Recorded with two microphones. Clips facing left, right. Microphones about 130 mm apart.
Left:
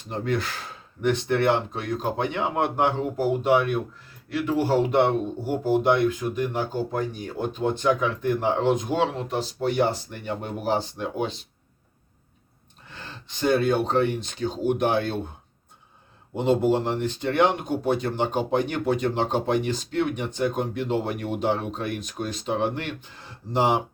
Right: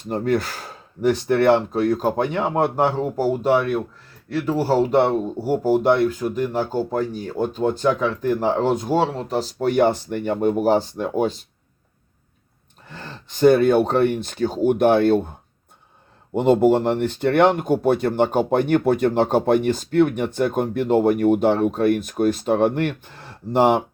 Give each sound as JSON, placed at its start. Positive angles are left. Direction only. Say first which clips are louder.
{"t": 0.1, "sound": "speech", "louder": "right 6 dB", "side_deg": -45}
{"t": 12.9, "sound": "speech", "louder": "right 5 dB", "side_deg": -50}
{"t": 16.3, "sound": "speech", "louder": "right 6 dB", "side_deg": -55}